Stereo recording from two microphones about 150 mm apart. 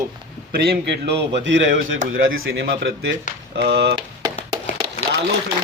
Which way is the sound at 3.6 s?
90° right.